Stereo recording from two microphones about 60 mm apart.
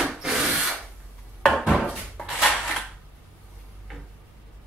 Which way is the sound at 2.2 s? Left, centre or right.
Centre.